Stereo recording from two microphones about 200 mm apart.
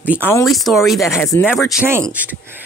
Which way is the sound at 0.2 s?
10° left (ahead or behind).